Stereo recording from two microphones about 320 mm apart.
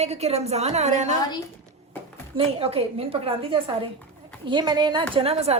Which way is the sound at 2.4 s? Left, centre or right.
Centre.